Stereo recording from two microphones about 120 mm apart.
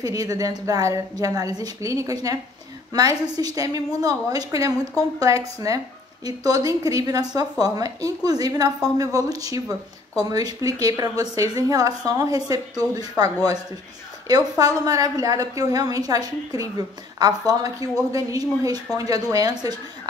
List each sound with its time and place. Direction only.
0.0 s a woman's voice: 30° right (ahead or behind)